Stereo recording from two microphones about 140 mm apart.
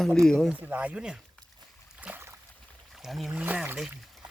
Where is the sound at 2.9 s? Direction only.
Centre (ahead or behind).